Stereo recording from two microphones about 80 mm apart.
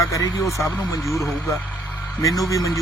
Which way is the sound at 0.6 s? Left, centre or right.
Left.